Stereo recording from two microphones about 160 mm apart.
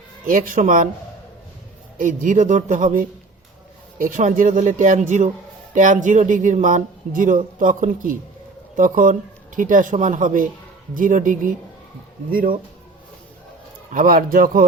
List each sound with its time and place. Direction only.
0.3 s speech: 60° right (ahead or behind)
2.0 s speech: 55° right (ahead or behind)
13.9 s speech: 55° right (ahead or behind)